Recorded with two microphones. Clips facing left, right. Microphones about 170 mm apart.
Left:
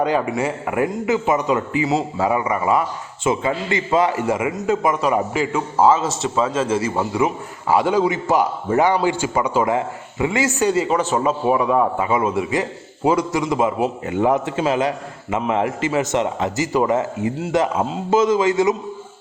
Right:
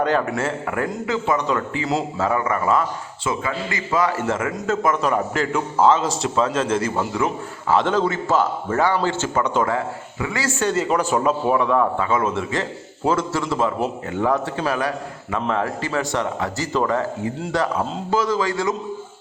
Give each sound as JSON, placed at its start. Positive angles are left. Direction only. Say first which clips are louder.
{"t": 0.0, "sound": "a man's voice", "louder": "left 1 dB", "side_deg": 10}
{"t": 3.2, "sound": "a man's voice", "louder": "left 5 dB", "side_deg": 25}
{"t": 4.3, "sound": "a man's voice", "louder": "left 3 dB", "side_deg": 15}
{"t": 9.7, "sound": "a man's voice", "louder": "left 3 dB", "side_deg": 20}
{"t": 10.7, "sound": "a man's voice", "louder": "left 2 dB", "side_deg": 5}